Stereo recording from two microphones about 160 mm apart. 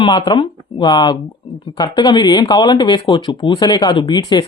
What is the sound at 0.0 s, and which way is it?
Speech, 30° left (ahead or behind).